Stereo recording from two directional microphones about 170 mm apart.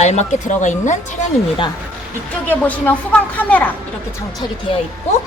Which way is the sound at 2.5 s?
10° left (ahead or behind).